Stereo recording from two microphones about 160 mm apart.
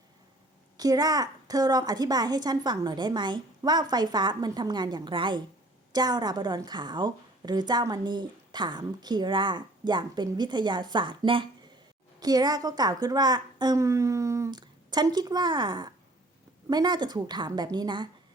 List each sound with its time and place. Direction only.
0.8 s a woman's voice: 25° right (ahead or behind)